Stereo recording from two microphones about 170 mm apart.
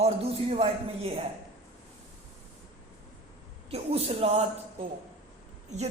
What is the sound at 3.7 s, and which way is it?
Speech, 35° right (ahead or behind).